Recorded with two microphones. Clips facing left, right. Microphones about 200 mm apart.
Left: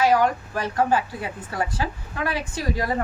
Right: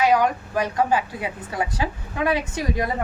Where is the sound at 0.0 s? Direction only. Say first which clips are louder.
Even; 20° right (ahead or behind).